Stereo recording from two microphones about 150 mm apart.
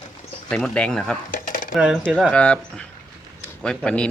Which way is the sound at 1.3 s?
60° left (ahead or behind).